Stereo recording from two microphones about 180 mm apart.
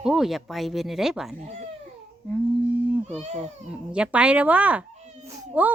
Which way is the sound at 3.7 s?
5° right (ahead or behind).